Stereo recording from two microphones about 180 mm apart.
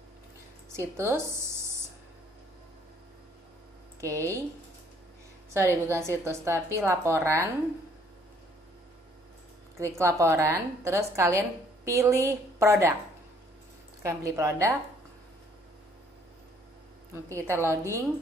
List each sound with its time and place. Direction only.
0.7 s a sound: 15° right (ahead or behind)
4.0 s a woman's voice: 15° right (ahead or behind)
5.5 s a woman's voice: 15° right (ahead or behind)
9.8 s a woman's voice: 15° right (ahead or behind)
14.0 s a woman's voice: 15° right (ahead or behind)
17.1 s a woman's voice: 15° right (ahead or behind)